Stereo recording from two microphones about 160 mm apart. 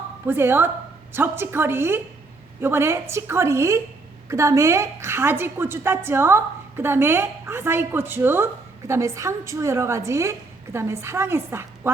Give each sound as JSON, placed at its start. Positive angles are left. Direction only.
{"t": 0.3, "sound": "a woman's voice", "side_deg": -15}